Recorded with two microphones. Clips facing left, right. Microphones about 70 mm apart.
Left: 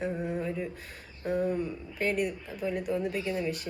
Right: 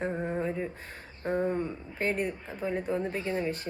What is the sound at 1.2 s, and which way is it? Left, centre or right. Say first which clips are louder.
Speech: even; right.